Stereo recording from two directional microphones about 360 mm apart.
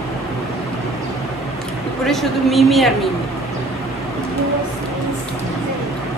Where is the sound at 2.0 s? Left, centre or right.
Centre.